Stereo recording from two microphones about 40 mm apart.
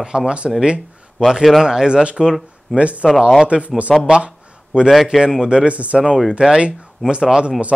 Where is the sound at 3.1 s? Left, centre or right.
Centre.